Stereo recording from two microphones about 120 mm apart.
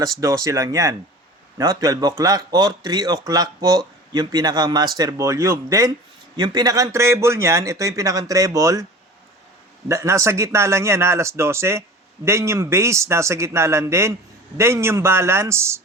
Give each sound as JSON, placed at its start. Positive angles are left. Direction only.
{"t": 0.0, "sound": "a man's voice", "side_deg": -25}
{"t": 9.9, "sound": "speech", "side_deg": -25}